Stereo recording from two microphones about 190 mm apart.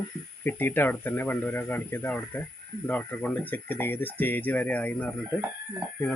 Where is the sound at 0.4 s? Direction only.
10° left (ahead or behind).